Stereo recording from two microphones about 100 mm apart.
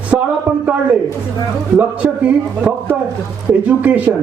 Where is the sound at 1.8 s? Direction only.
15° right (ahead or behind).